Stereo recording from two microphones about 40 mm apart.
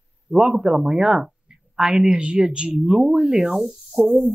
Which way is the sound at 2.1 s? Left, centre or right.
Right.